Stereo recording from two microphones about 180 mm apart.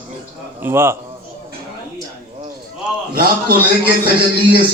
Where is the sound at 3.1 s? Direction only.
55° right (ahead or behind).